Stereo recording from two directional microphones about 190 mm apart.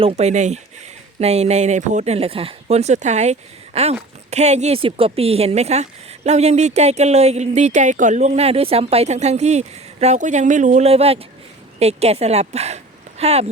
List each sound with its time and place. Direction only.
0.0 s a woman's voice: 30° right (ahead or behind)